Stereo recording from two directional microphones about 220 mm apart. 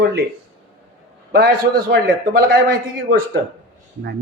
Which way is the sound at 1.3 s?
45° right (ahead or behind).